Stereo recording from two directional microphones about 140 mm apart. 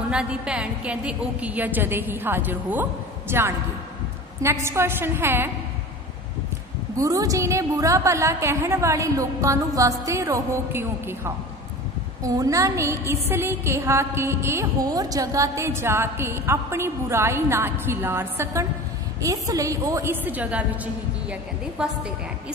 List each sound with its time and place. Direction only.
0.1 s a woman's voice: 5° right (ahead or behind)
7.0 s a woman's voice: 25° right (ahead or behind); by 22.1 s 5° right (ahead or behind)